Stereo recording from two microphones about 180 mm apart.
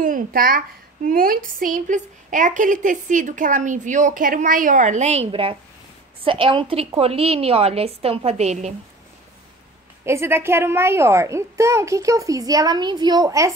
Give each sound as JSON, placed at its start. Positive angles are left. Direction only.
{"t": 0.0, "sound": "a woman's voice", "side_deg": -50}
{"t": 10.0, "sound": "a child's voice", "side_deg": -15}